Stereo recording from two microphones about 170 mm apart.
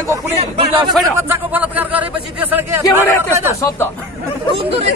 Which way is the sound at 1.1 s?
10° right (ahead or behind).